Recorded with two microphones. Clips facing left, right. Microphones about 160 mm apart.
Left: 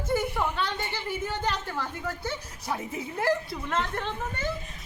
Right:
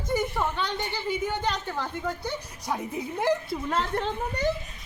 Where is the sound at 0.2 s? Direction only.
10° left (ahead or behind).